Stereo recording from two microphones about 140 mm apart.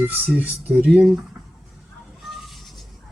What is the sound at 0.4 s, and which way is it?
Speech, 5° right (ahead or behind).